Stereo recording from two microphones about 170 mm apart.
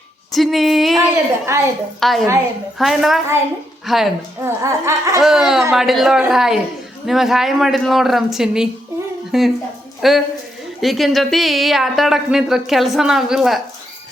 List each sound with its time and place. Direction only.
0.3 s a woman's voice: centre (ahead or behind)
1.1 s laughter: 15° right (ahead or behind)
2.0 s a woman's voice: centre (ahead or behind)
4.4 s laughter: 15° right (ahead or behind)
5.2 s a woman's voice: centre (ahead or behind)